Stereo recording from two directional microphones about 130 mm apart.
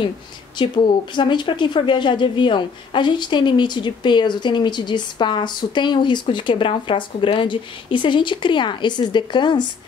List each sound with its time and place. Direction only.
0.6 s a woman's voice: 35° left (ahead or behind)